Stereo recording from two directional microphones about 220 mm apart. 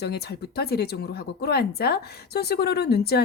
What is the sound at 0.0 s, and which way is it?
Speech, 45° left (ahead or behind).